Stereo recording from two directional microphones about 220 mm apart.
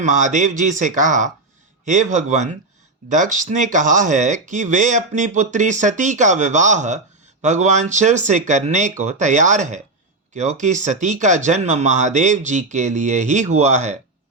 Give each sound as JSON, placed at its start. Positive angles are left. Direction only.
{"t": 0.0, "sound": "speech", "side_deg": -35}